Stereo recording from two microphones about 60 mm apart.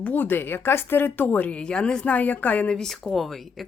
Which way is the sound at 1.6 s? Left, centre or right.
Centre.